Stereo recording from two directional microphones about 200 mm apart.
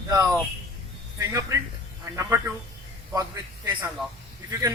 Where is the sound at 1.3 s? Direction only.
15° right (ahead or behind).